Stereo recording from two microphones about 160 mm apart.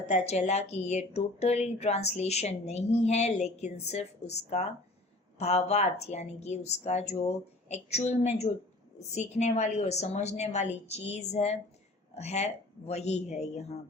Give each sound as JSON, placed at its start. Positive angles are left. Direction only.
{"t": 0.1, "sound": "a woman's voice", "side_deg": 45}